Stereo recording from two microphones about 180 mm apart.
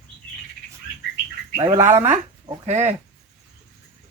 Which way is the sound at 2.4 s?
40° right (ahead or behind).